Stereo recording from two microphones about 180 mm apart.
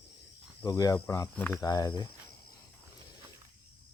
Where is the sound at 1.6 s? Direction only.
20° left (ahead or behind).